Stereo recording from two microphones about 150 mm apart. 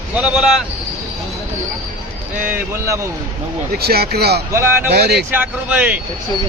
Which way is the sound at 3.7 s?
90° right.